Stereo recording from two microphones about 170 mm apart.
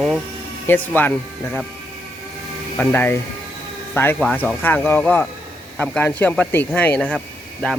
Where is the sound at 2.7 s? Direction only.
10° left (ahead or behind).